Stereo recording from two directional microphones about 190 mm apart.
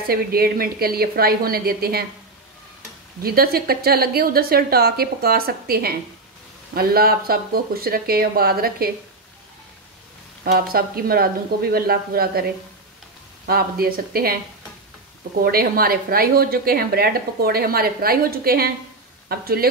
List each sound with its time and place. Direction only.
0.1 s speech: 50° right (ahead or behind)
3.2 s speech: 50° right (ahead or behind)
10.4 s speech: 50° right (ahead or behind)
13.5 s speech: 50° right (ahead or behind)
15.4 s speech: 50° right (ahead or behind)